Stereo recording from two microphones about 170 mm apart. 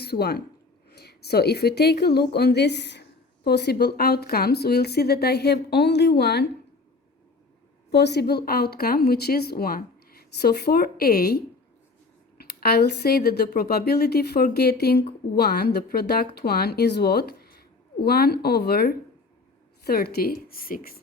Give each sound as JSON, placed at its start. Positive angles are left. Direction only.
{"t": 0.0, "sound": "speech", "side_deg": 65}
{"t": 7.9, "sound": "speech", "side_deg": 80}